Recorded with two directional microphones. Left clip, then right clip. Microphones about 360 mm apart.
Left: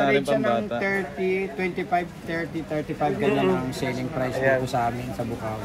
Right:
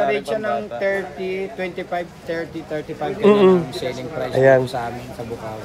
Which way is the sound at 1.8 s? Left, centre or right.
Left.